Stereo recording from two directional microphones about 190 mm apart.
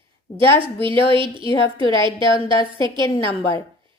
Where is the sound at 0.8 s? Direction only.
25° right (ahead or behind).